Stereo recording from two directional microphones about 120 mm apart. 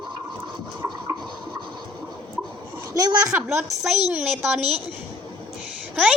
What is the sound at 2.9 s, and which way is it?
Speech, 30° right (ahead or behind).